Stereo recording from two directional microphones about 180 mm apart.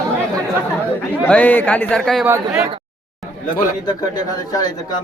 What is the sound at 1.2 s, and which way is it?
A man's voice, 10° left (ahead or behind).